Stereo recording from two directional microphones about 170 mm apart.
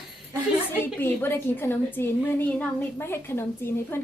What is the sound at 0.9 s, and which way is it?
A woman's voice, 15° left (ahead or behind).